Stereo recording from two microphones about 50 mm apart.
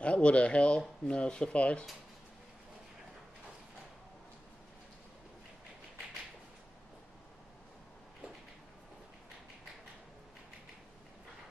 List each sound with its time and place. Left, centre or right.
0.0 s speech: left